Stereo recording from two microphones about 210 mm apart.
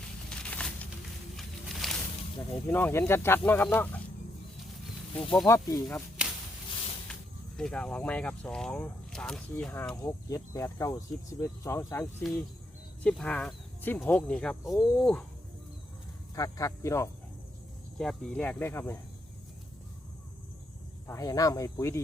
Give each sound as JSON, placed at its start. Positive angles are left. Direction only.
{"t": 0.3, "sound": "a sound", "side_deg": 5}
{"t": 1.4, "sound": "music", "side_deg": 0}
{"t": 2.5, "sound": "speech", "side_deg": 10}
{"t": 5.5, "sound": "speech", "side_deg": 15}
{"t": 6.2, "sound": "whip", "side_deg": -5}
{"t": 7.1, "sound": "speech", "side_deg": 0}
{"t": 16.3, "sound": "speech", "side_deg": 15}
{"t": 17.9, "sound": "speech", "side_deg": 0}
{"t": 21.1, "sound": "speech", "side_deg": 15}